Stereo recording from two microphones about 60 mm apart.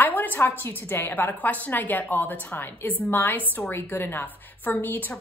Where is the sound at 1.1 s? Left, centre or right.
Left.